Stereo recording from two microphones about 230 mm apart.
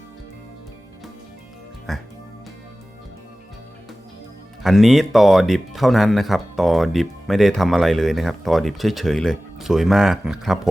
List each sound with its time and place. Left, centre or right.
1.9 s speech: centre
4.6 s speech: centre